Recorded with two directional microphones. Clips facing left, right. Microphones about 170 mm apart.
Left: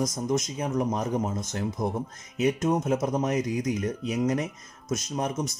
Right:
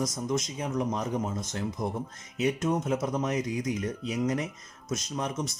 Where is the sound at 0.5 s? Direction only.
40° left (ahead or behind).